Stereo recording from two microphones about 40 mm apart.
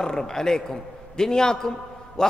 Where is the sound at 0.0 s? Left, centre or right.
Centre.